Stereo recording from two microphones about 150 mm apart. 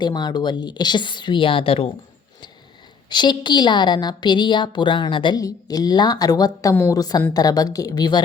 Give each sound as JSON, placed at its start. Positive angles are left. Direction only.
{"t": 0.0, "sound": "a woman's voice", "side_deg": 30}
{"t": 3.1, "sound": "a woman's voice", "side_deg": 30}